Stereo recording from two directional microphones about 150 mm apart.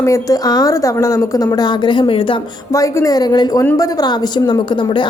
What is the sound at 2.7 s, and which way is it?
A woman's voice, 20° left (ahead or behind).